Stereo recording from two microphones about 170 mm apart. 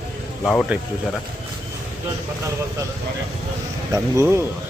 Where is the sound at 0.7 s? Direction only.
10° right (ahead or behind).